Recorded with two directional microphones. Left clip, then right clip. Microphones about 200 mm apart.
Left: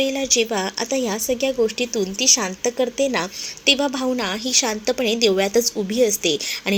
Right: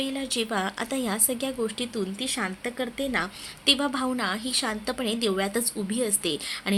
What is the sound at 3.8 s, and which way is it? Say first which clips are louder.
Speech: left 6 dB; centre (ahead or behind).